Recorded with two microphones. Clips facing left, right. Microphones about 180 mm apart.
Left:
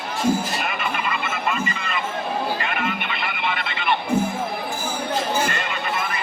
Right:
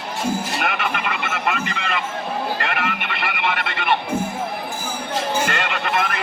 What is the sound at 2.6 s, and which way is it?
Music, 70° right (ahead or behind).